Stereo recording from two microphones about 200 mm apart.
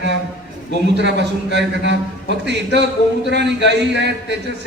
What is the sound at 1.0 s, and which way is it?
Speech, 60° right (ahead or behind).